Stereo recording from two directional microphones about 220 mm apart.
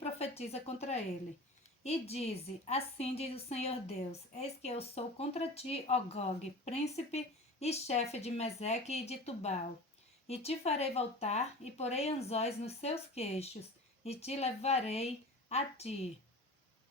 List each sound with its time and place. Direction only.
0.0 s a woman's voice: 30° left (ahead or behind)